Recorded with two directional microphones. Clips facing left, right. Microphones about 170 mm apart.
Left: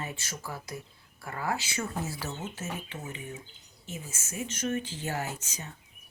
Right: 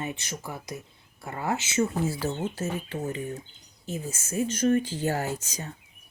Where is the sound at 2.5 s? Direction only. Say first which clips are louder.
Right 7 dB; 35° right (ahead or behind).